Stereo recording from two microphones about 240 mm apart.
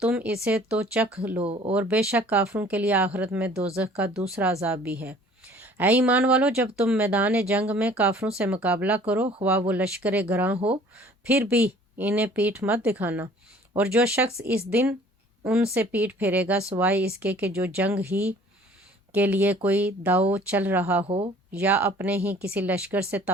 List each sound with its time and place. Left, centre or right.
0.0 s speech: centre
1.4 s speech: right
1.7 s speech: centre